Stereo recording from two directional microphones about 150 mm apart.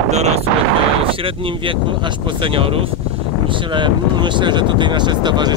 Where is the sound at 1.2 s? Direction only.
35° right (ahead or behind).